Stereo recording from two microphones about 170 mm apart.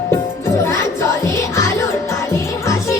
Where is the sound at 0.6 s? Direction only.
15° left (ahead or behind).